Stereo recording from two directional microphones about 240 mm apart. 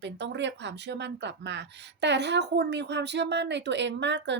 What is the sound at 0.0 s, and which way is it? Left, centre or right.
Speech, right.